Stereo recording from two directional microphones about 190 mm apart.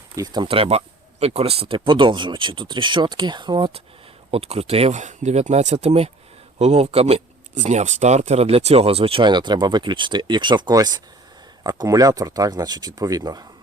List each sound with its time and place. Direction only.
0.2 s speech: 25° right (ahead or behind)